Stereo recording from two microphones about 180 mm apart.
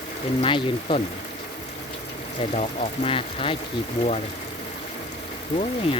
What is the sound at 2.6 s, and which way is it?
Speech, 30° left (ahead or behind).